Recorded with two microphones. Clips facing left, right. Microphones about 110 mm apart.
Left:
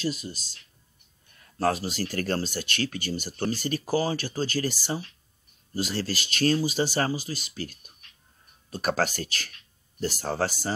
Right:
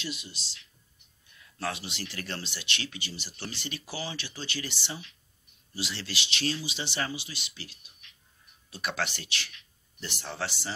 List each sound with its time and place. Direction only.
0.0 s speech: 40° left (ahead or behind)